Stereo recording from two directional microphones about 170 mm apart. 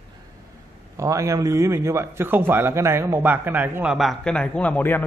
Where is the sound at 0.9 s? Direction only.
20° right (ahead or behind).